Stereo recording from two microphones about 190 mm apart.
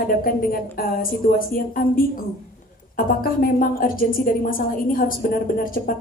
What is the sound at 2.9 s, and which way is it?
A woman's voice, 50° left (ahead or behind).